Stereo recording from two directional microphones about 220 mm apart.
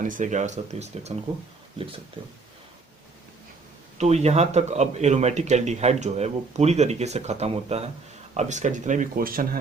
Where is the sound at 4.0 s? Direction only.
30° right (ahead or behind).